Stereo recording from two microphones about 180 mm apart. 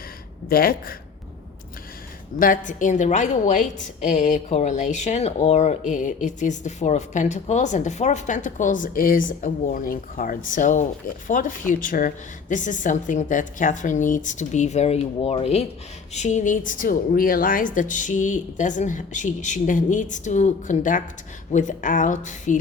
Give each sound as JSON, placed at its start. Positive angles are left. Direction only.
{"t": 0.4, "sound": "speech", "side_deg": 55}
{"t": 2.4, "sound": "a woman's voice", "side_deg": 45}